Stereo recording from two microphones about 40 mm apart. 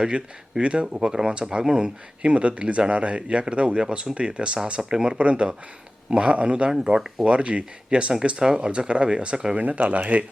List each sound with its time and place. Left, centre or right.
0.6 s speech: right
0.9 s speech: centre
4.9 s speech: centre
5.1 s speech: right
7.3 s speech: right
9.6 s speech: right